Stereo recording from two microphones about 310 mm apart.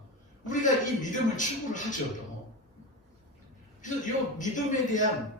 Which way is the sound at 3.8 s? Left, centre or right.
Left.